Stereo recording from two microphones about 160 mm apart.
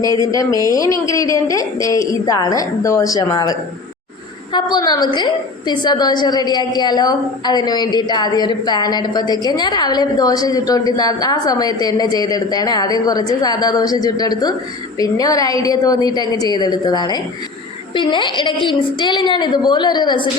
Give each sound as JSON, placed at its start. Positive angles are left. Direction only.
{"t": 0.3, "sound": "a woman's voice", "side_deg": 20}